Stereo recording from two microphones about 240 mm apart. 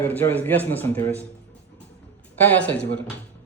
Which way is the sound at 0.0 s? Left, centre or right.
Centre.